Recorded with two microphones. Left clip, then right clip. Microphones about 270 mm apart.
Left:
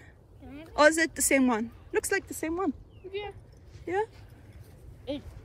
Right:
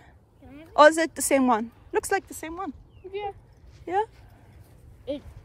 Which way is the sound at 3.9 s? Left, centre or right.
Centre.